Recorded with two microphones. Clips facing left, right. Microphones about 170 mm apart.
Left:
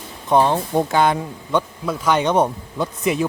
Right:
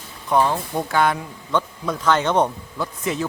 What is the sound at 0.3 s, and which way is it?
Speech, 25° left (ahead or behind).